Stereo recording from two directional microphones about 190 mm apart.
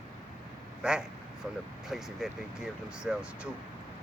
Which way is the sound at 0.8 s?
5° right (ahead or behind).